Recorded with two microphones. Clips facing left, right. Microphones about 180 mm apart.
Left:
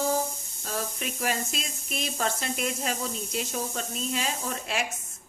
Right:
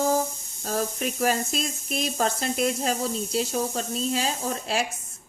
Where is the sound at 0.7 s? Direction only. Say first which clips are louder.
Right 6 dB; 40° right (ahead or behind).